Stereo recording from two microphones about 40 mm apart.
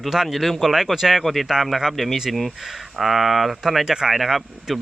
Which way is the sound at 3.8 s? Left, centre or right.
Centre.